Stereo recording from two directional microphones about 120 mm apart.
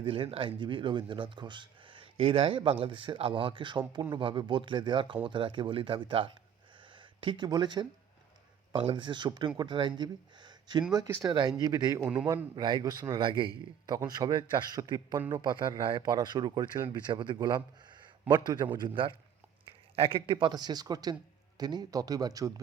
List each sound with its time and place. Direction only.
0.0 s a man's voice: 50° right (ahead or behind); by 22.6 s 30° right (ahead or behind)